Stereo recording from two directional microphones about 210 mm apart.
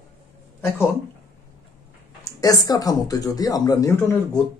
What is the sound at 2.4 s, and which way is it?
Speech, 15° left (ahead or behind).